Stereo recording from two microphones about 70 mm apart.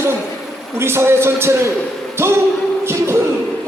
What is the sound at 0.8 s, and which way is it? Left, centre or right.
A man's voice, right.